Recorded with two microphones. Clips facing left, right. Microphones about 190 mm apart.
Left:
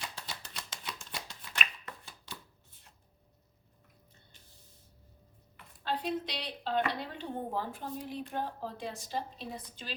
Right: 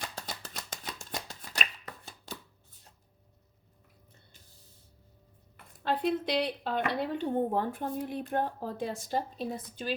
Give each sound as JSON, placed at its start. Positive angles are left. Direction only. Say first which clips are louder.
{"t": 0.2, "sound": "shuffling cards", "louder": "right 4 dB", "side_deg": -45}
{"t": 5.8, "sound": "a woman's voice", "louder": "right 5 dB", "side_deg": -55}